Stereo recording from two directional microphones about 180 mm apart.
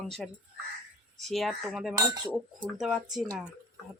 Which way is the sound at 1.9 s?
20° right (ahead or behind).